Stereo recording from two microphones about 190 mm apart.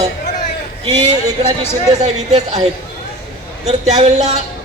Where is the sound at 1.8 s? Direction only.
35° right (ahead or behind).